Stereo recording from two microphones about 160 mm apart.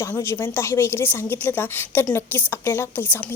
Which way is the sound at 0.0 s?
20° left (ahead or behind).